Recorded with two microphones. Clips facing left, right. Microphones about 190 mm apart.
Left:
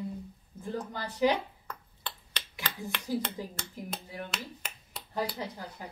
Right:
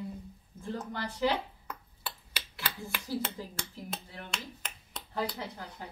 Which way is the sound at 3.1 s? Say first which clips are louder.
Left 3 dB; 15° left (ahead or behind).